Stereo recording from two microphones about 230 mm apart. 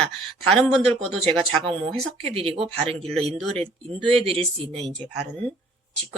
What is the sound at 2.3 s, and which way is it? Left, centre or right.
Speech, right.